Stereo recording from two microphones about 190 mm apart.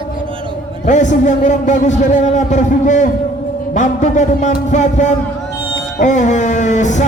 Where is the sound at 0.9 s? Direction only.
40° left (ahead or behind).